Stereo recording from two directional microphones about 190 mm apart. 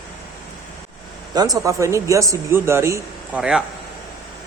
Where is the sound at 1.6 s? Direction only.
15° right (ahead or behind).